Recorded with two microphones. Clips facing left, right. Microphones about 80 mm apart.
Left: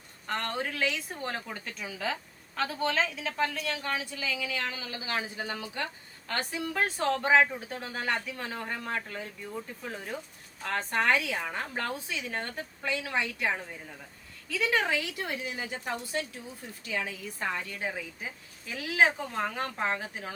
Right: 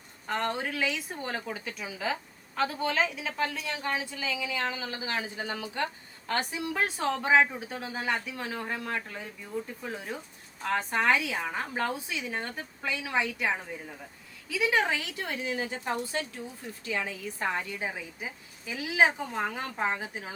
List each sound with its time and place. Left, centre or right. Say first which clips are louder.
0.3 s a woman's voice: right 2 dB; centre
6.7 s speech: left 1 dB; centre
14.8 s a woman's voice: right 1 dB; right
15.4 s a woman's voice: right 3 dB; right
17.7 s speech: even; centre